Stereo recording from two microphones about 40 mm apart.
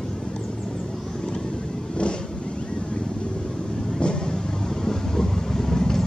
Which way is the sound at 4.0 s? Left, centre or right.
Left.